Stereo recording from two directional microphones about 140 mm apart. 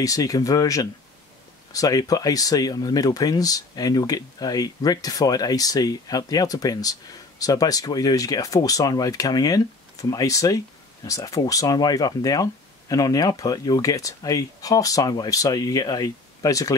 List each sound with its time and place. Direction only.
0.0 s speech: 25° left (ahead or behind)